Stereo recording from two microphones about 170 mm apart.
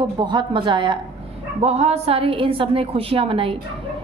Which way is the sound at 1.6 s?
40° right (ahead or behind).